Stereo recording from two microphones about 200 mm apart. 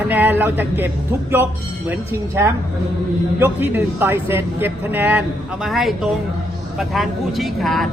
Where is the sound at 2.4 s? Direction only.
10° right (ahead or behind).